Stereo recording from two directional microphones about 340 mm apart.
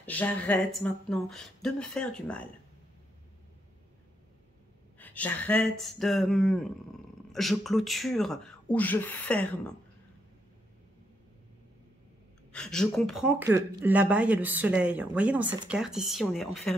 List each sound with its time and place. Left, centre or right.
0.0 s speech: centre
4.9 s speech: centre
12.5 s speech: centre